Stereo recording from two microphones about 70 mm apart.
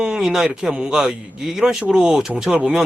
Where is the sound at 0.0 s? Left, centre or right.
Centre.